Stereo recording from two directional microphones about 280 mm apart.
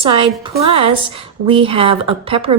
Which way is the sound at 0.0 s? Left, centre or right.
Centre.